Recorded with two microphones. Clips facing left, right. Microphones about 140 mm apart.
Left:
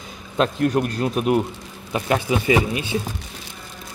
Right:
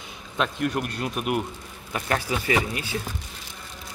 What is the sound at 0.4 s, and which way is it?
Speech, 35° left (ahead or behind).